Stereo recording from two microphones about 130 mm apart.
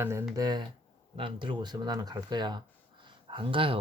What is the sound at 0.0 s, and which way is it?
Speech, 20° right (ahead or behind).